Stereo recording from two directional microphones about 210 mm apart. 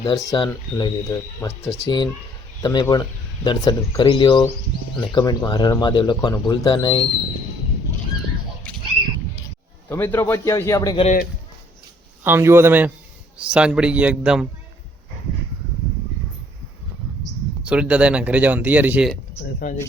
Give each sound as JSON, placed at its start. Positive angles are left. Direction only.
{"t": 0.0, "sound": "speech", "side_deg": 15}
{"t": 9.9, "sound": "a man's voice", "side_deg": 10}
{"t": 11.0, "sound": "speech", "side_deg": 40}
{"t": 12.2, "sound": "a man's voice", "side_deg": -10}
{"t": 17.6, "sound": "speech", "side_deg": -5}
{"t": 19.5, "sound": "speech", "side_deg": 40}